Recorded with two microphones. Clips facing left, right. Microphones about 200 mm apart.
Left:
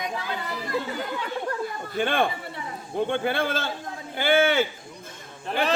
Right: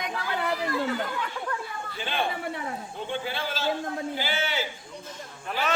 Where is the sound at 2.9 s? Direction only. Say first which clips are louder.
Left 11 dB; 55° left (ahead or behind).